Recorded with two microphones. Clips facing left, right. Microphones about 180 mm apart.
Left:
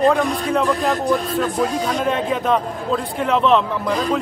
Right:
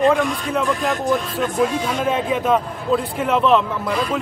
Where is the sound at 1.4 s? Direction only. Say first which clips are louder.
Right 1 dB; 5° right (ahead or behind).